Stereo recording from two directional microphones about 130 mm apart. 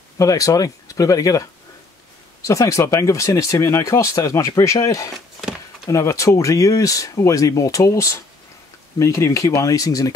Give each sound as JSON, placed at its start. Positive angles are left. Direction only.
{"t": 0.2, "sound": "speech", "side_deg": 25}